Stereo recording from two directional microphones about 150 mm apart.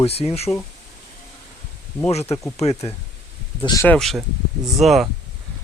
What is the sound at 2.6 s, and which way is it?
Speech, 40° left (ahead or behind).